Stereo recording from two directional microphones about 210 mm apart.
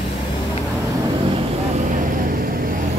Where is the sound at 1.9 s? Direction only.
40° right (ahead or behind).